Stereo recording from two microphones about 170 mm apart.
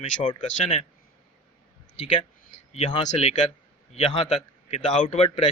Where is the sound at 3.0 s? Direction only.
40° left (ahead or behind).